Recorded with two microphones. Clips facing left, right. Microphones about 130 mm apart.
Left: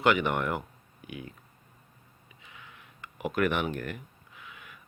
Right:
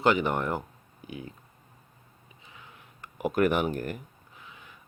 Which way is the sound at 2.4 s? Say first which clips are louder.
Even; 35° right (ahead or behind).